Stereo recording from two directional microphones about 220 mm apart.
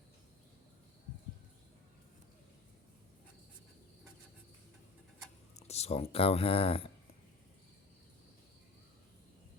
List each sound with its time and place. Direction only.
5.6 s speech: 30° left (ahead or behind)